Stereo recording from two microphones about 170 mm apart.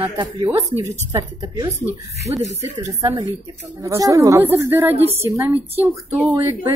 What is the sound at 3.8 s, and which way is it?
Speech, 20° right (ahead or behind).